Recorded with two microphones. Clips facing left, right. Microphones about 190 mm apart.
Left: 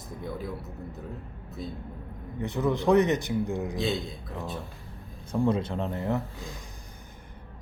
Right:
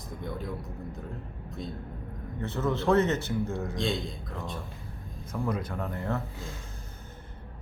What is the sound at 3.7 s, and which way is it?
Speech, 5° left (ahead or behind).